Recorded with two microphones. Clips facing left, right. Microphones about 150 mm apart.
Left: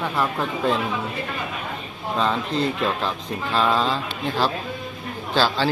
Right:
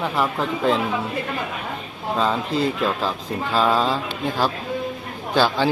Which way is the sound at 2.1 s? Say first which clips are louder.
Right 1 dB; 5° right (ahead or behind).